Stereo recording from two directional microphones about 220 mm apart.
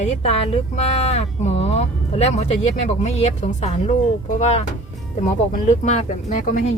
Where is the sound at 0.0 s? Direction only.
30° left (ahead or behind).